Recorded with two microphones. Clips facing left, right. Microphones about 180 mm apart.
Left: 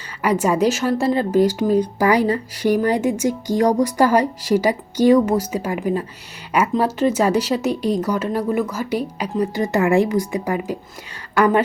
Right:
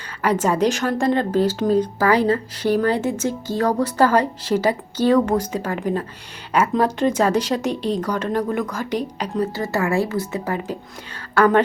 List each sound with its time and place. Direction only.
0.2 s speech: 10° left (ahead or behind)